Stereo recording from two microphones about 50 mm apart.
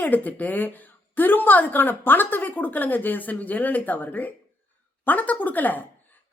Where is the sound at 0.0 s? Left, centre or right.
Left.